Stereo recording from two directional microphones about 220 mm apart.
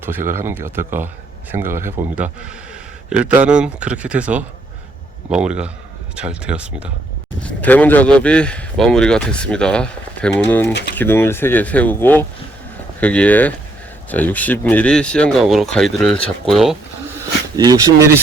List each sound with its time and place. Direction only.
0.0 s speech: 10° right (ahead or behind)
7.4 s speech: 5° left (ahead or behind)
10.7 s speech: 50° left (ahead or behind)
10.9 s speech: 10° left (ahead or behind)
17.6 s speech: 15° right (ahead or behind)